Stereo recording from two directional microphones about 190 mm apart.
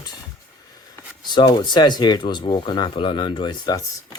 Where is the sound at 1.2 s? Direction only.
25° left (ahead or behind).